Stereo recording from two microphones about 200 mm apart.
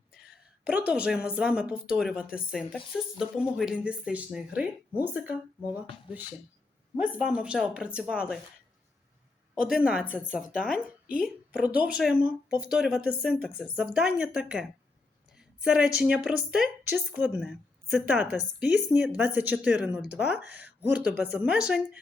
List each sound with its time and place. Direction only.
0.1 s a sound: 5° right (ahead or behind)
0.7 s speech: 5° right (ahead or behind)
6.9 s speech: 5° right (ahead or behind)
9.6 s a woman's voice: 5° right (ahead or behind)